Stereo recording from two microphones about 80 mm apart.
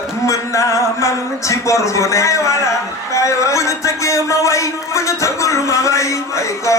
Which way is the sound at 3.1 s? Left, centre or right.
Left.